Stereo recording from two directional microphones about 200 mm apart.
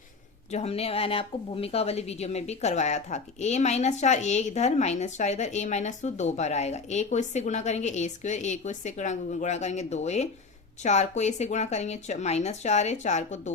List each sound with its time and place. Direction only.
0.5 s a woman's voice: 30° left (ahead or behind)